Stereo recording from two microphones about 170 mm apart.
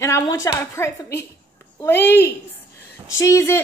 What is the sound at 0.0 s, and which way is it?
A woman's voice, 20° left (ahead or behind).